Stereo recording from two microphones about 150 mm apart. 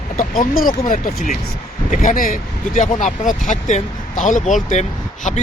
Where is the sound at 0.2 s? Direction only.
70° left (ahead or behind).